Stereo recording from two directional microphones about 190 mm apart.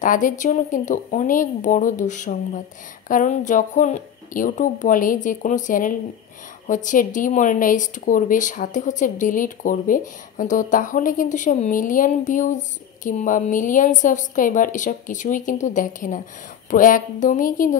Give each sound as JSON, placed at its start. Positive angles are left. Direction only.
{"t": 0.0, "sound": "speech", "side_deg": 45}